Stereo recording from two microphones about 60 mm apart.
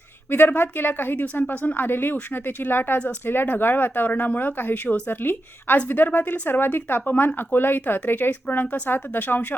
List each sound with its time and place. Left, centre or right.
0.3 s speech: left